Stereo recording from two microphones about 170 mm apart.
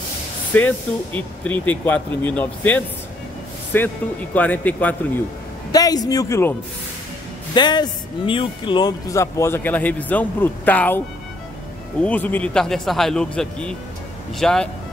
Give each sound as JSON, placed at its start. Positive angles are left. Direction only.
{"t": 0.5, "sound": "speech", "side_deg": 10}
{"t": 5.7, "sound": "speech", "side_deg": 20}
{"t": 7.5, "sound": "speech", "side_deg": 25}
{"t": 12.0, "sound": "a man's voice", "side_deg": 10}